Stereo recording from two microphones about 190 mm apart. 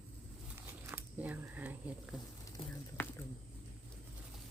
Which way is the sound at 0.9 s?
10° right (ahead or behind).